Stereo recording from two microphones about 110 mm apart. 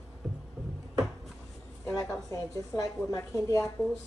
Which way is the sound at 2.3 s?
30° left (ahead or behind).